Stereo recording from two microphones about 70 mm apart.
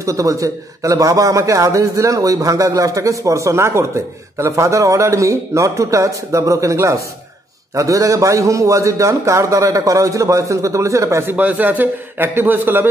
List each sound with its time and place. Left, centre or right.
0.0 s a man's voice: right
11.2 s a man's voice: right